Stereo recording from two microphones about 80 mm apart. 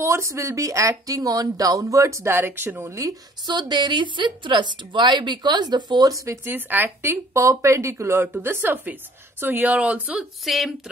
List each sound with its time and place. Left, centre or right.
0.0 s speech: right
2.9 s speech: right
3.4 s a woman's voice: right
6.1 s speech: right
6.5 s speech: right
10.1 s speech: centre